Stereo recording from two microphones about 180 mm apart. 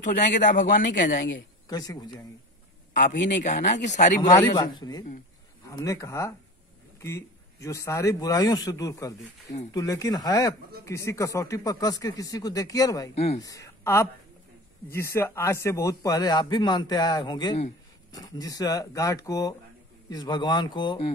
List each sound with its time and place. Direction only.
0.0 s a man's voice: 45° left (ahead or behind)
1.7 s speech: 20° left (ahead or behind)
2.9 s a sound: 45° left (ahead or behind)
3.3 s speech: 45° left (ahead or behind)
4.2 s speech: 20° left (ahead or behind)
13.1 s speech: 35° left (ahead or behind)
13.4 s speech: 20° left (ahead or behind)